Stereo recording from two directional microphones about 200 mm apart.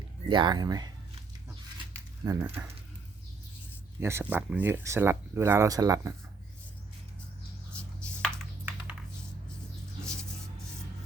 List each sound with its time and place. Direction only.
0.3 s speech: 25° right (ahead or behind)
2.2 s speech: 15° right (ahead or behind)
4.0 s speech: 10° right (ahead or behind)
7.7 s chopping: 5° left (ahead or behind)
10.0 s a sound: 5° left (ahead or behind)